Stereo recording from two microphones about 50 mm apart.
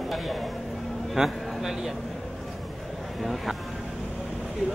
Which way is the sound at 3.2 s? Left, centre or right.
Centre.